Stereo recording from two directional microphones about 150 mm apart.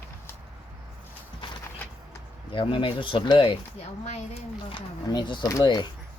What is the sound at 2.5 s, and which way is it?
Speech, 35° left (ahead or behind).